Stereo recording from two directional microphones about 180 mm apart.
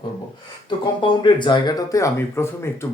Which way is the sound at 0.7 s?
25° left (ahead or behind).